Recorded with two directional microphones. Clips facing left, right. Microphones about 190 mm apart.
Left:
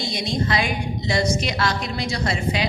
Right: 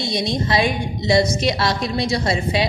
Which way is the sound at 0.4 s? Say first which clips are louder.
Right 5 dB; 25° right (ahead or behind).